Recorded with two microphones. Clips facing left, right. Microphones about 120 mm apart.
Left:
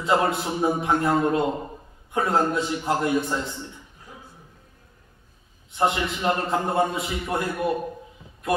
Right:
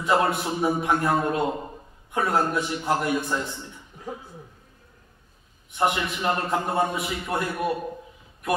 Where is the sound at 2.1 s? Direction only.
25° left (ahead or behind).